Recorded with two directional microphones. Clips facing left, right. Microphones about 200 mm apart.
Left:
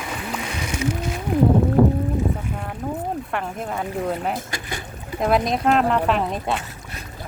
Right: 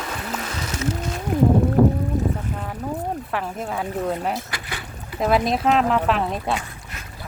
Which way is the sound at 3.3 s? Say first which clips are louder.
Even; centre (ahead or behind).